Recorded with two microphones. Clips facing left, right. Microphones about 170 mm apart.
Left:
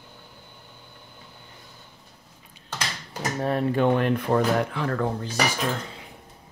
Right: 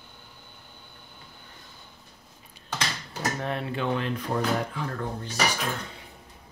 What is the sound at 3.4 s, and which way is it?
Speech, 40° left (ahead or behind).